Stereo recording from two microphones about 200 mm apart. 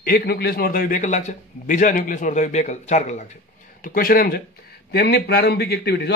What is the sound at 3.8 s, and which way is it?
A man's voice, 45° left (ahead or behind).